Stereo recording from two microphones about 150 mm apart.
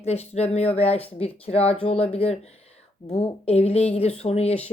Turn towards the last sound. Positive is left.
turn(degrees=45)  # may be behind; listen again after turning